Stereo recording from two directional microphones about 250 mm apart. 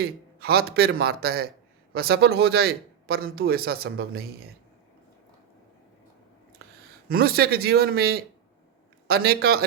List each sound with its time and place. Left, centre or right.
0.0 s speech: right
7.1 s speech: right